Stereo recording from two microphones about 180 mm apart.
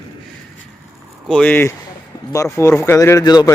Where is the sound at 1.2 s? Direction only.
5° left (ahead or behind); by 3.5 s 20° left (ahead or behind).